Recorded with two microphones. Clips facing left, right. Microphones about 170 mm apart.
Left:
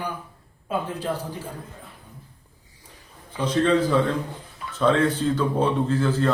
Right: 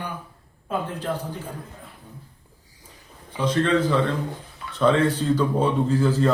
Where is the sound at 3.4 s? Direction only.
5° left (ahead or behind).